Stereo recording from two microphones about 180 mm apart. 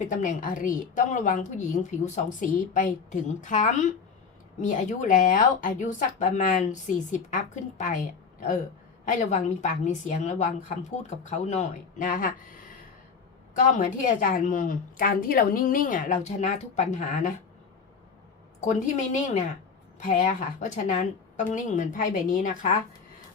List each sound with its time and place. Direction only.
0.0 s speech: 45° left (ahead or behind)
13.6 s speech: 45° left (ahead or behind)
18.6 s speech: 45° left (ahead or behind)